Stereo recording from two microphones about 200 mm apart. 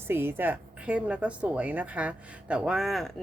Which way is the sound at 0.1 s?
10° right (ahead or behind).